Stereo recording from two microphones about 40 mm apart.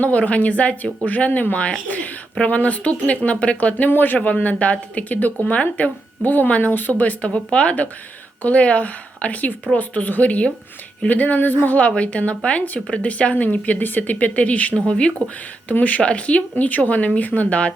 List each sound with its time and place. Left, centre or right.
0.0 s a woman's voice: left
3.8 s speech: left
7.2 s a woman's voice: left
11.8 s a woman's voice: left
15.7 s a woman's voice: left
16.0 s a woman's voice: left